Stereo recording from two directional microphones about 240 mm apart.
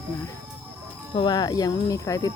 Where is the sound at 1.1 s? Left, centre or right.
Centre.